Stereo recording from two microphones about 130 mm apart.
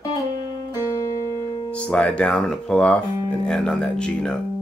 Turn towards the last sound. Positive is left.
turn(degrees=10)  # may be behind; listen again after turning